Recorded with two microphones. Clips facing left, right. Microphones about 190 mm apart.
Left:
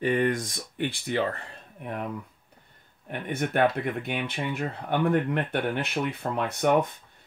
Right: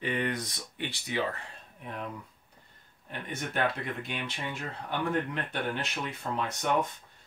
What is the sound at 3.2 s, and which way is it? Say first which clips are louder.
Speech: left 7 dB; 55° left (ahead or behind).